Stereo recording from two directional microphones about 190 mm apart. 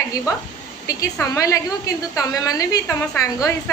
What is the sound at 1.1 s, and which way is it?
A woman's voice, 15° left (ahead or behind).